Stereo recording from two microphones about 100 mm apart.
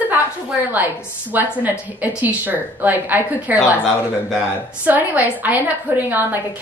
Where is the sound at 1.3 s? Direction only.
20° right (ahead or behind).